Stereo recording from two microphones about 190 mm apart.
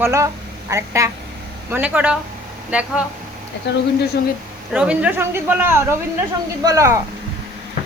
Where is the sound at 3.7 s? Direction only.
65° left (ahead or behind).